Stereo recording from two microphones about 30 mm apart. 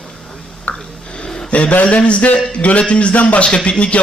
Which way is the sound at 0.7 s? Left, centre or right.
Left.